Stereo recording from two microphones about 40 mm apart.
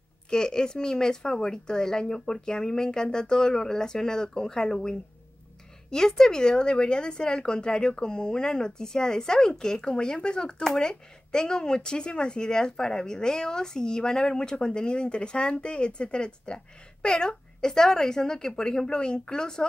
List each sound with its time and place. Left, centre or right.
0.3 s speech: centre